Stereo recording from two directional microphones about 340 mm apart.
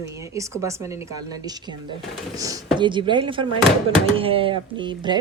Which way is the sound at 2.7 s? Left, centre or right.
Centre.